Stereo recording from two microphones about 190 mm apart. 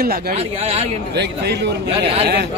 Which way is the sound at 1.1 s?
60° right (ahead or behind).